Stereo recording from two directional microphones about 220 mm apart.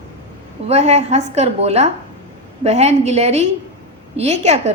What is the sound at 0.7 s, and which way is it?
Speech, 30° right (ahead or behind).